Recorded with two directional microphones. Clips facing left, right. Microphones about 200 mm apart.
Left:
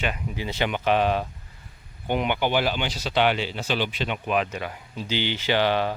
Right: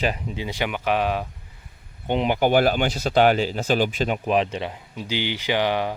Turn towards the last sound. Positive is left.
turn(degrees=-15)  # may be behind; listen again after turning